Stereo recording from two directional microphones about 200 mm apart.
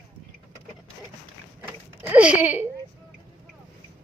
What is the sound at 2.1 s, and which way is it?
Speech, 5° right (ahead or behind).